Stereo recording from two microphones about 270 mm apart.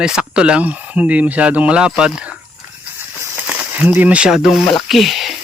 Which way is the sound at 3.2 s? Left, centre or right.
Centre.